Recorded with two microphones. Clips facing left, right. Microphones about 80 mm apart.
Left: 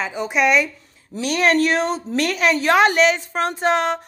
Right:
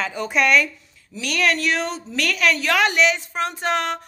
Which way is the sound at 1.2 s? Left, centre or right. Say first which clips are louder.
Left 4 dB; left.